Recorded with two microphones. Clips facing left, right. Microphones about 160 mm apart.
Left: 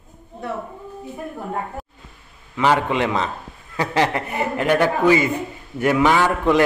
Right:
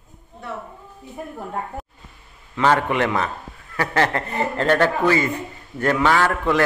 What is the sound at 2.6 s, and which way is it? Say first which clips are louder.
A man's voice: even; 15° left (ahead or behind).